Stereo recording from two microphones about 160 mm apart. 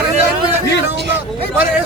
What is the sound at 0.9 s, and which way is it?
Speech, 90° right.